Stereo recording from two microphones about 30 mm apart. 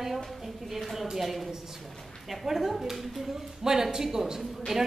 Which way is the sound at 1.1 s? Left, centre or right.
Centre.